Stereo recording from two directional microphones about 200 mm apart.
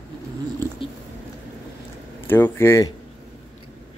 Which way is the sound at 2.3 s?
10° left (ahead or behind).